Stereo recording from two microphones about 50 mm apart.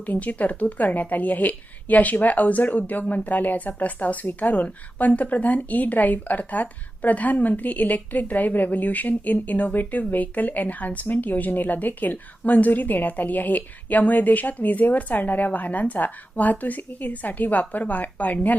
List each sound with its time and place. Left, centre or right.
0.0 s a woman's voice: left